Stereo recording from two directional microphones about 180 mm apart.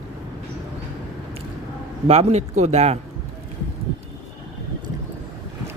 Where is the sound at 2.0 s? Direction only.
35° right (ahead or behind).